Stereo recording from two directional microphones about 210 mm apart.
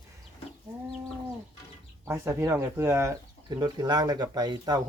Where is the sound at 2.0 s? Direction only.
10° right (ahead or behind).